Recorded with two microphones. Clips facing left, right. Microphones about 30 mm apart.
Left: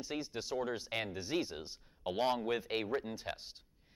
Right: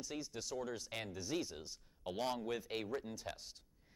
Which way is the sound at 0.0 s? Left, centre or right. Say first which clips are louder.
Left 5 dB; left.